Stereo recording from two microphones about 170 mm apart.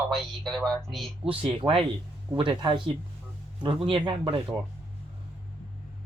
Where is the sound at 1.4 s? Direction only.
30° right (ahead or behind).